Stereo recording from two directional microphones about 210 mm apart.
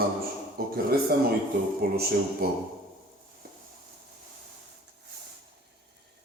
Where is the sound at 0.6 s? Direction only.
45° right (ahead or behind).